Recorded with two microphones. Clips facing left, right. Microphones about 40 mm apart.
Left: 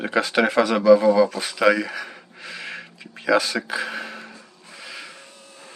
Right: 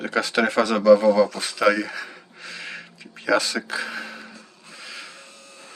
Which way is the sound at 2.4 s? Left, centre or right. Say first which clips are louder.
Left 1 dB; centre.